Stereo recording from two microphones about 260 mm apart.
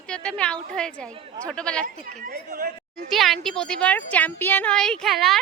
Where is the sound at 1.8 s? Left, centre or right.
Right.